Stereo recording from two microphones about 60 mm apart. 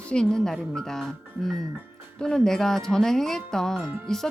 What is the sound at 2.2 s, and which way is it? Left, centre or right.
Speech, centre.